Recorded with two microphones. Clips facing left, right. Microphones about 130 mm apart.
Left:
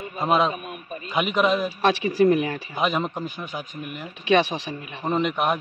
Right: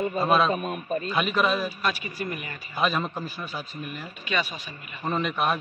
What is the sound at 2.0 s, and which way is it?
Speech, 90° left.